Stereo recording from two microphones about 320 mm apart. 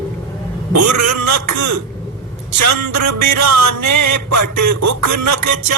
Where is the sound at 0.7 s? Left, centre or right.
Right.